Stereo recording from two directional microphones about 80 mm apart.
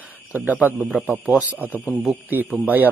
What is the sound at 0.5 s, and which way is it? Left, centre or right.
Speech, centre.